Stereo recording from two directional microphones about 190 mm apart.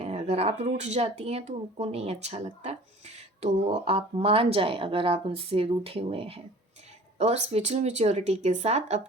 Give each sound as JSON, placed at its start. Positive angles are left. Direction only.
{"t": 0.0, "sound": "speech", "side_deg": -35}